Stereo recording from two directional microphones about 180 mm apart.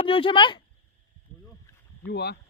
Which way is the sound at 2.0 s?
65° left (ahead or behind).